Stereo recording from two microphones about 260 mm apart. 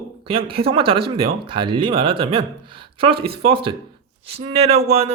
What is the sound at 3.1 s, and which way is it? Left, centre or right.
Speech, right.